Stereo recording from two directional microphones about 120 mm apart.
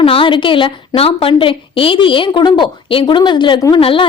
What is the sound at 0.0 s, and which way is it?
Speech, 50° left (ahead or behind).